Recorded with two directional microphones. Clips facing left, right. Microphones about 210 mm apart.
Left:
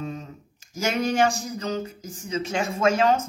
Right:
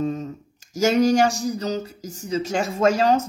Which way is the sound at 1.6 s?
40° right (ahead or behind).